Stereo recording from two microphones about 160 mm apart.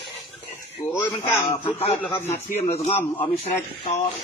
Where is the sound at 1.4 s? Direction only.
35° left (ahead or behind).